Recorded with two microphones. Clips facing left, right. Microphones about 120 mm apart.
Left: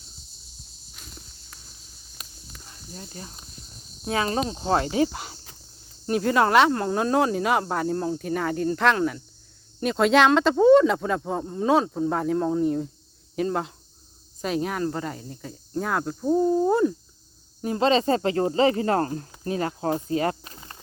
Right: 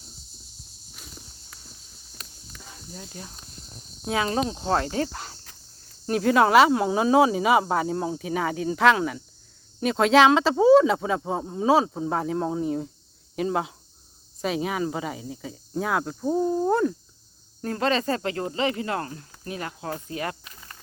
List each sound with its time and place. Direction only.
0.9 s walk: centre (ahead or behind)
2.2 s walk: 10° left (ahead or behind)
2.9 s speech: centre (ahead or behind)
6.1 s speech: centre (ahead or behind)
17.6 s speech: 20° left (ahead or behind)